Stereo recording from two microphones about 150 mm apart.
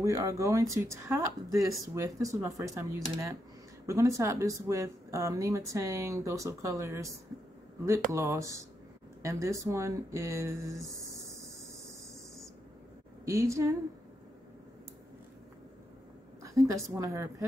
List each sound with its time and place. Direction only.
0.0 s speech: 20° right (ahead or behind)
13.2 s speech: 20° right (ahead or behind)
16.5 s speech: 20° right (ahead or behind)